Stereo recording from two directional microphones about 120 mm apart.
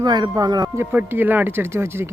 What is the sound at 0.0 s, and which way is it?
Speech, 35° right (ahead or behind).